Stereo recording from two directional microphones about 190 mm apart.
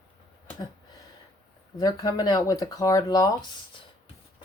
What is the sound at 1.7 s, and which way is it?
Speech, 20° left (ahead or behind).